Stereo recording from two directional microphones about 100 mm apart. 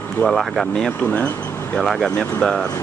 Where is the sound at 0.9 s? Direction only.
15° left (ahead or behind).